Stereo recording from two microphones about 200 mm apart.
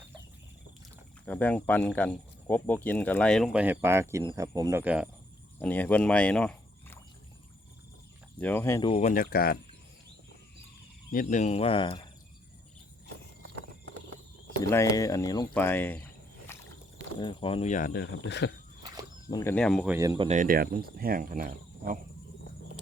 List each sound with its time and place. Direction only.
1.2 s speech: 10° left (ahead or behind); by 4.8 s 15° right (ahead or behind)
4.8 s speech: 5° right (ahead or behind)
5.5 s speech: 10° left (ahead or behind)
8.4 s speech: 10° left (ahead or behind)
8.9 s speech: 35° left (ahead or behind)
11.1 s speech: 40° left (ahead or behind); by 12.0 s 25° left (ahead or behind)
14.7 s speech: 15° left (ahead or behind)
17.2 s speech: 25° left (ahead or behind); by 18.5 s 60° left (ahead or behind)
19.3 s speech: 15° left (ahead or behind); by 20.0 s centre (ahead or behind)
20.0 s speech: 20° right (ahead or behind)
20.2 s speech: 40° right (ahead or behind)